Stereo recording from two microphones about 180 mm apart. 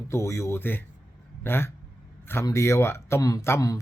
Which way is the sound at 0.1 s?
15° left (ahead or behind).